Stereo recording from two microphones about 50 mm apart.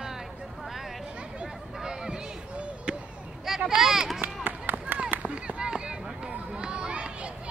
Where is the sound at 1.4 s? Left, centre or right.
Centre.